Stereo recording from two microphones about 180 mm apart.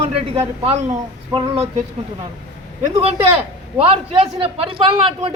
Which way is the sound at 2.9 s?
35° right (ahead or behind).